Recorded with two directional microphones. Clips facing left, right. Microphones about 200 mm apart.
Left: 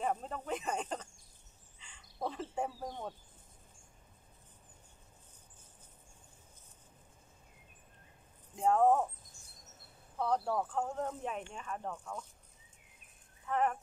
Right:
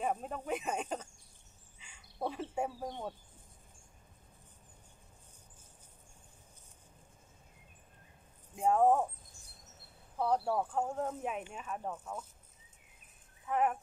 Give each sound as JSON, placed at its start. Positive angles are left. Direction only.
{"t": 0.0, "sound": "speech", "side_deg": -10}
{"t": 1.8, "sound": "a sound", "side_deg": -10}
{"t": 8.5, "sound": "speech", "side_deg": -10}
{"t": 10.1, "sound": "speech", "side_deg": -5}
{"t": 13.5, "sound": "speech", "side_deg": -10}